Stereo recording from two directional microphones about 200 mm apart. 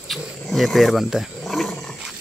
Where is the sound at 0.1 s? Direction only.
Centre (ahead or behind).